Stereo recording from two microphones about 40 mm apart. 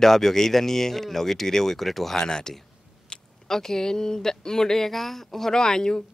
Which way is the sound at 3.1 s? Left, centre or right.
Left.